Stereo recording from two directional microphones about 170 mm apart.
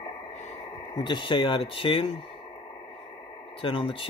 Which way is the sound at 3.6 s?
30° left (ahead or behind).